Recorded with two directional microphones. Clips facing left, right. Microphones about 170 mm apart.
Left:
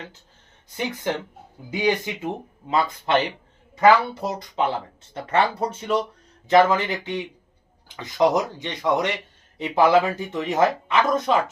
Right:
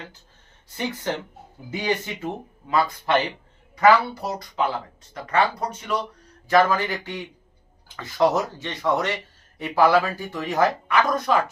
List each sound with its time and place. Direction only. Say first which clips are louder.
1.7 s speech: left 3 dB; 15° left (ahead or behind)